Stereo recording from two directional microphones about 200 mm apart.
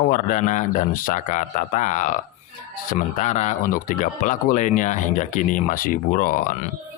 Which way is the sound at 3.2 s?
35° left (ahead or behind).